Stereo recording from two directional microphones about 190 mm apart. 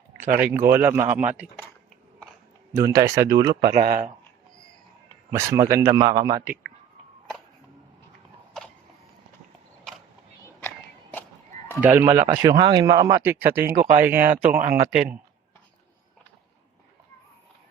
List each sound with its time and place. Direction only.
0.2 s speech: 45° right (ahead or behind)
0.4 s speech: 10° right (ahead or behind)
2.7 s speech: 15° right (ahead or behind)
3.7 s speech: 35° right (ahead or behind)
5.3 s a man's voice: 15° right (ahead or behind)
11.8 s speech: 10° right (ahead or behind)
14.6 s speech: 45° right (ahead or behind)